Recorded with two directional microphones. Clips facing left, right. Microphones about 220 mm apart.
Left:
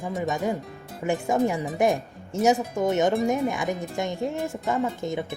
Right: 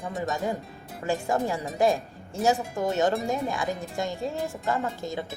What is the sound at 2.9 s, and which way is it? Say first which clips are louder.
Speech: left 3 dB; 20° left (ahead or behind).